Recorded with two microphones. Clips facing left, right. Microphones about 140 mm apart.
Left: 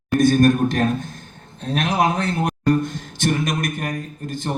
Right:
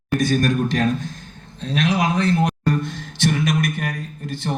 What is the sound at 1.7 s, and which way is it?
Speech, 50° left (ahead or behind).